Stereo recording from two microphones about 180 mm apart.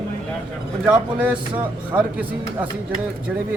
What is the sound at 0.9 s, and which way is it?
Speech, 5° right (ahead or behind).